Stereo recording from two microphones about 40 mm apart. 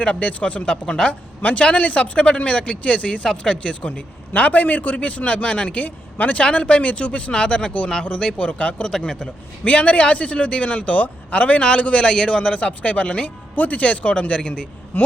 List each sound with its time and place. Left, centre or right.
0.0 s speech: left
1.4 s a man's voice: left
6.4 s speech: left
8.8 s speech: centre
9.6 s a man's voice: left
14.9 s a sound: left